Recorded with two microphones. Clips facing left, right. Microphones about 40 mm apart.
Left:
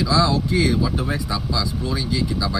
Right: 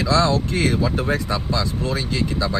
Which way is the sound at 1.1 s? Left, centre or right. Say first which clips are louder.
Right 2 dB; right.